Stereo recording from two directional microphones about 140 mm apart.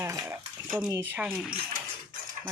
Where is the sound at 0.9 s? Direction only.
20° right (ahead or behind).